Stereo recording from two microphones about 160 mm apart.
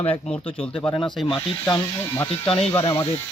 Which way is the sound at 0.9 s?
20° left (ahead or behind).